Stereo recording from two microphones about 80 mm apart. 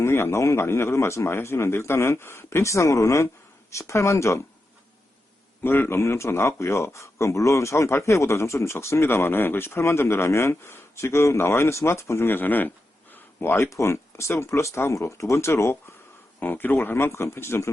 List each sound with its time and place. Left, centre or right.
0.0 s speech: left
5.6 s speech: left
16.4 s speech: left